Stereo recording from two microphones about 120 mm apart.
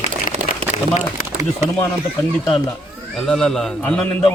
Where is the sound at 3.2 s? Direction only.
5° left (ahead or behind).